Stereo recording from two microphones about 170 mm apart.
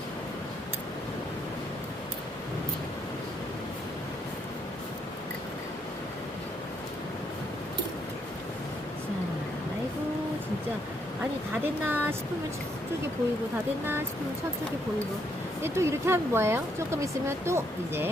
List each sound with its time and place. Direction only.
11.9 s speech: 10° right (ahead or behind)
15.6 s speech: 15° right (ahead or behind)